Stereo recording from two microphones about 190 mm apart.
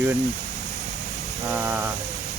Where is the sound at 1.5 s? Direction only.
10° right (ahead or behind).